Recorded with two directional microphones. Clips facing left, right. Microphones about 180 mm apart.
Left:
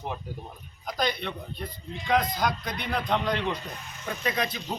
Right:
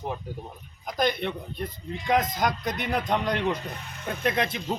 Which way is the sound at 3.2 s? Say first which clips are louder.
Right 2 dB; 45° right (ahead or behind).